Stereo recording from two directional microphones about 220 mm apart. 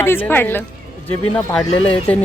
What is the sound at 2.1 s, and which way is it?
Speech, 5° left (ahead or behind).